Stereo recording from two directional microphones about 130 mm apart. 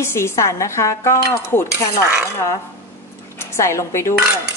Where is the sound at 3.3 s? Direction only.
20° left (ahead or behind).